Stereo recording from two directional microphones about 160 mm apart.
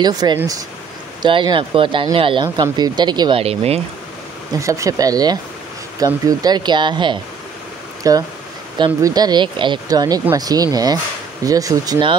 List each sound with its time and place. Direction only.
0.0 s speech: 25° right (ahead or behind)
4.6 s speech: 20° right (ahead or behind)